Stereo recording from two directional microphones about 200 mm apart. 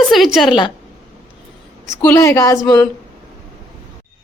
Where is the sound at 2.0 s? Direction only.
15° left (ahead or behind).